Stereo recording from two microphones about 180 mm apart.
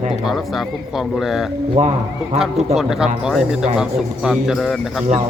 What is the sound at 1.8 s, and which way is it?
Speech, 40° right (ahead or behind).